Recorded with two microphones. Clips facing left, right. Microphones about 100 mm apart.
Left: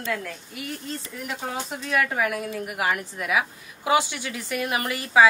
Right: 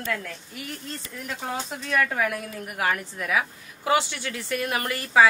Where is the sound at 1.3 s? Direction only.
5° left (ahead or behind).